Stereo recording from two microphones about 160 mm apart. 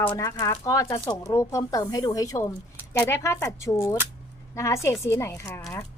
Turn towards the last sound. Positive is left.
turn(degrees=15)  # may be behind; listen again after turning